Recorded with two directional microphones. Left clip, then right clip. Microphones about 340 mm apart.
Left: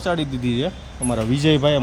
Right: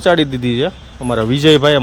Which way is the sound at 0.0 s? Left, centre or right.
Centre.